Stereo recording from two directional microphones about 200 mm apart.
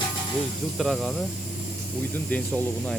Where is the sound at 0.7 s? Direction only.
Centre (ahead or behind).